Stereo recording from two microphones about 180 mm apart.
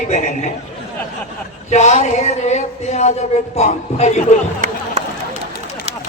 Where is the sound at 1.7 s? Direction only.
40° left (ahead or behind).